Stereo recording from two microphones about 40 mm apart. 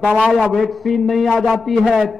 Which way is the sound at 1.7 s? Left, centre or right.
Centre.